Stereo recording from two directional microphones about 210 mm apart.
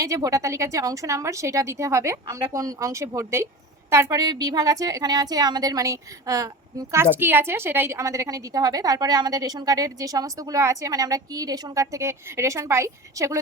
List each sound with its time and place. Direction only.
0.0 s speech: 15° right (ahead or behind)